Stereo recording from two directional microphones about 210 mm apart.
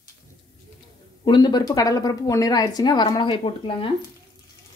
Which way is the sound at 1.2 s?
20° left (ahead or behind).